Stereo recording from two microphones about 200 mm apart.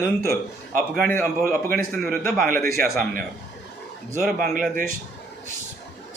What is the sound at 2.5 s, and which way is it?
Speech, 15° left (ahead or behind).